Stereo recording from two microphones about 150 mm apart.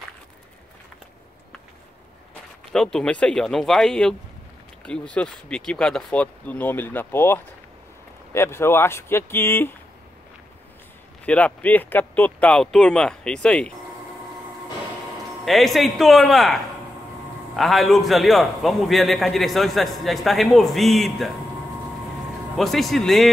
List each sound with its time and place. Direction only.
2.7 s a man's voice: 5° left (ahead or behind)
11.2 s speech: 10° left (ahead or behind)
15.4 s a man's voice: centre (ahead or behind)
17.6 s a man's voice: centre (ahead or behind)
22.6 s a man's voice: centre (ahead or behind)